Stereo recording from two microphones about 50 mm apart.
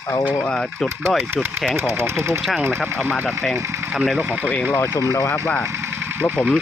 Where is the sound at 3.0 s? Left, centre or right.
Right.